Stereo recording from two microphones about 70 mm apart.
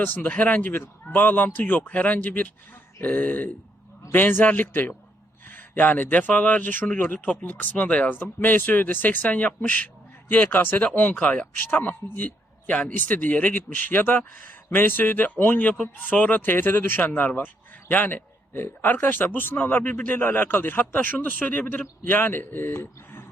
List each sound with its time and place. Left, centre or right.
0.0 s a man's voice: left